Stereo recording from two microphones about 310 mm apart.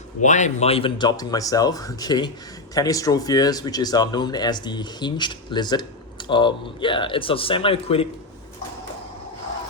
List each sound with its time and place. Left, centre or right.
0.2 s speech: left